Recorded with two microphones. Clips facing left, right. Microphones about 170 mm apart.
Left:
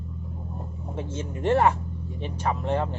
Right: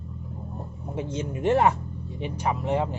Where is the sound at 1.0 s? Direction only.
15° right (ahead or behind).